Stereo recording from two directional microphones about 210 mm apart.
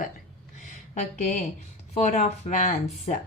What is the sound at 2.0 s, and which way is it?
Speech, 35° left (ahead or behind).